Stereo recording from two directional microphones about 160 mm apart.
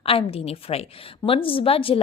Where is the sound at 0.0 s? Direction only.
35° left (ahead or behind).